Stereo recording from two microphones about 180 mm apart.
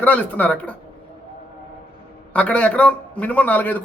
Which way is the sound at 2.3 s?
5° left (ahead or behind).